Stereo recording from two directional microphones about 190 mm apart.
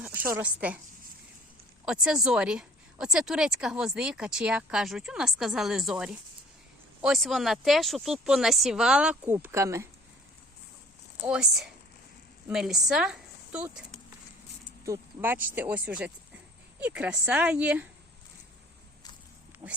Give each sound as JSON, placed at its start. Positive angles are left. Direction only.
{"t": 0.0, "sound": "speech", "side_deg": -10}
{"t": 1.8, "sound": "speech", "side_deg": -5}
{"t": 11.3, "sound": "speech", "side_deg": -5}
{"t": 19.6, "sound": "speech", "side_deg": -20}